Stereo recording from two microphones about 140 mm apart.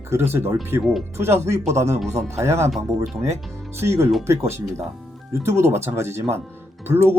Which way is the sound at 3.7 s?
20° right (ahead or behind).